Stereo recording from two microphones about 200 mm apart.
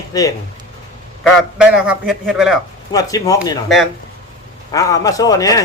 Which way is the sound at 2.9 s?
15° left (ahead or behind).